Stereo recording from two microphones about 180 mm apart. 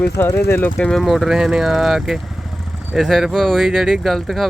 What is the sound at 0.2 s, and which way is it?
Speech, 15° left (ahead or behind).